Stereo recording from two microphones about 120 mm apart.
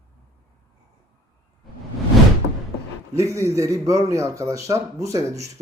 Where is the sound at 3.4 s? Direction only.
25° right (ahead or behind).